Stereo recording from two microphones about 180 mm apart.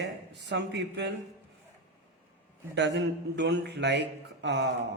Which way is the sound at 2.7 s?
75° right (ahead or behind).